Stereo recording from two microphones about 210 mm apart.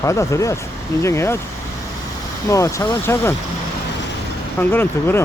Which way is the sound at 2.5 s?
15° left (ahead or behind).